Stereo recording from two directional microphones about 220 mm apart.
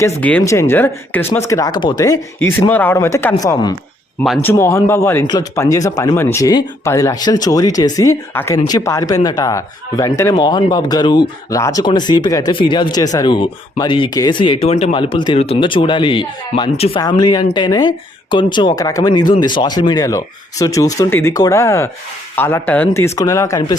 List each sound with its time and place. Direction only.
0.2 s a man's voice: 5° left (ahead or behind)
4.2 s a man's voice: 5° left (ahead or behind)